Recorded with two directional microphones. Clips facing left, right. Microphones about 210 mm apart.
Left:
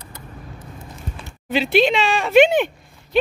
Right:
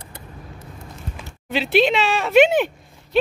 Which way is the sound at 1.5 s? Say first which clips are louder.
Left 1 dB; centre (ahead or behind).